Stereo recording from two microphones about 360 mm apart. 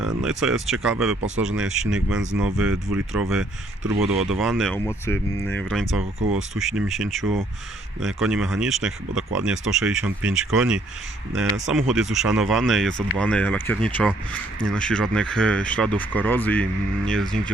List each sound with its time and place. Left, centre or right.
0.0 s speech: centre